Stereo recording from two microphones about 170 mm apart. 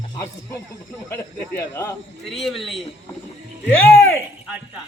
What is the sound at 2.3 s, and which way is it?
Speech, centre (ahead or behind).